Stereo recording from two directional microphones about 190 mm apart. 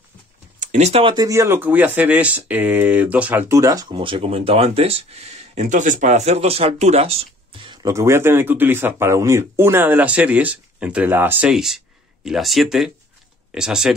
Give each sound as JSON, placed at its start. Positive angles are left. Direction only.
{"t": 0.6, "sound": "speech", "side_deg": -40}
{"t": 1.1, "sound": "speech", "side_deg": -15}